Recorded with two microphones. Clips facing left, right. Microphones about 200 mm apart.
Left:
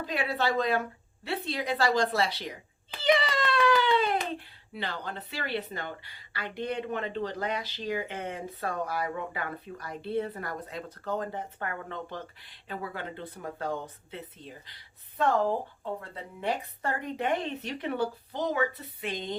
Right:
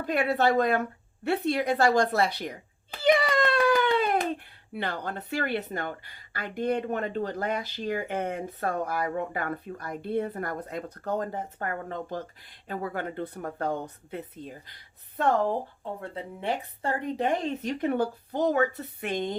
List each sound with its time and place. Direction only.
0.0 s speech: 55° right (ahead or behind)
3.0 s hands: 50° right (ahead or behind)
4.7 s speech: 55° right (ahead or behind)
16.5 s speech: 30° right (ahead or behind); by 19.3 s 50° right (ahead or behind)